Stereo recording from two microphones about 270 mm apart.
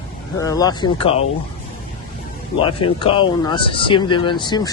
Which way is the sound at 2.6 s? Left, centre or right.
Centre.